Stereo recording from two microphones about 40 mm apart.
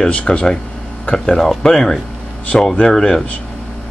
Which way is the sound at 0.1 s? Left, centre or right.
Left.